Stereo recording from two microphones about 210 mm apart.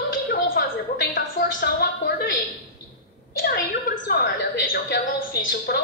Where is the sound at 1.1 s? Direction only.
45° left (ahead or behind).